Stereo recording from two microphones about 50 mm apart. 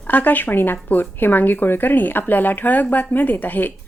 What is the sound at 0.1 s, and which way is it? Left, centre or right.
A woman's voice, left.